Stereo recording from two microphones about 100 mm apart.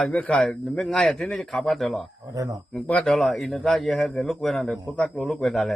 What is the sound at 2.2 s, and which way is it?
Speech, 35° right (ahead or behind).